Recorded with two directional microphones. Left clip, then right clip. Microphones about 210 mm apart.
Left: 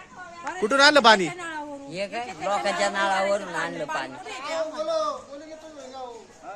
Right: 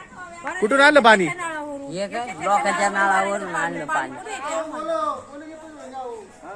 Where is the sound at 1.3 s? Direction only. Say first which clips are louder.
Right 5 dB; 40° right (ahead or behind).